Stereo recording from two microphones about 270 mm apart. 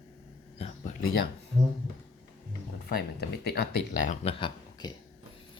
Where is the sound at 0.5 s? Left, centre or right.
Left.